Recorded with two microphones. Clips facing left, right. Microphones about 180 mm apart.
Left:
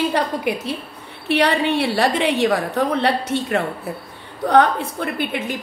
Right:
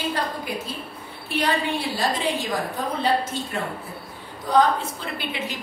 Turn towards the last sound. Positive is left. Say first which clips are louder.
# left 6 dB
turn(degrees=55)  # may be behind; listen again after turning